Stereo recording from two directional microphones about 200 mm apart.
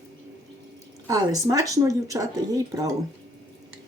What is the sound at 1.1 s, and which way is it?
Speech, 15° right (ahead or behind).